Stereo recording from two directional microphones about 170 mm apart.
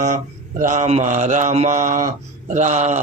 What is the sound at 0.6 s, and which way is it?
Mantra, 45° right (ahead or behind).